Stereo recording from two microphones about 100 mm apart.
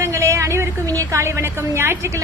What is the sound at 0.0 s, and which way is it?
A woman's voice, 30° right (ahead or behind).